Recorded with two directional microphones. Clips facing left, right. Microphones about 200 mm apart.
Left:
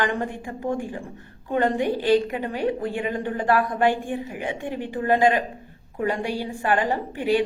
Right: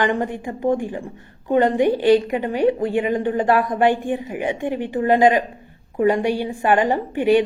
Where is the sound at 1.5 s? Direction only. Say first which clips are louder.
Right 5 dB; 15° right (ahead or behind).